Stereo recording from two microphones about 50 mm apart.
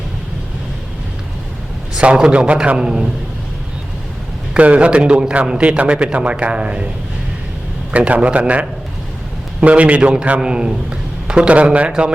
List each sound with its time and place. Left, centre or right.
2.0 s a man's voice: right
4.5 s a man's voice: right
7.9 s a man's voice: right